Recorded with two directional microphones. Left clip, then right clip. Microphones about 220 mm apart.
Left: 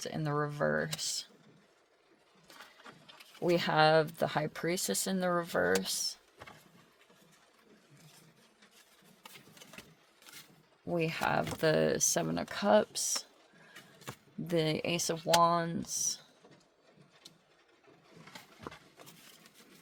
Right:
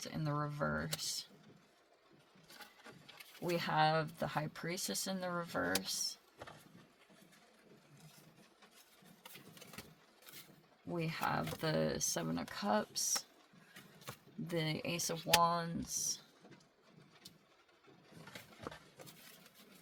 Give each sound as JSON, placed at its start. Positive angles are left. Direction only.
{"t": 0.0, "sound": "speech", "side_deg": 50}
{"t": 3.5, "sound": "speech", "side_deg": 50}
{"t": 10.9, "sound": "speech", "side_deg": 55}
{"t": 14.4, "sound": "speech", "side_deg": 50}